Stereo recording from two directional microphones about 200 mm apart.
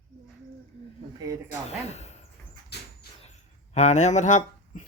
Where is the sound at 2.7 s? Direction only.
55° left (ahead or behind).